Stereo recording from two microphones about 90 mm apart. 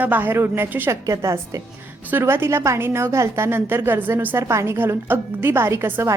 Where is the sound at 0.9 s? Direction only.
35° right (ahead or behind).